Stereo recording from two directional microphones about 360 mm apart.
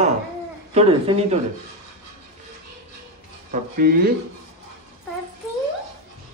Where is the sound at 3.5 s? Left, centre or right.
Right.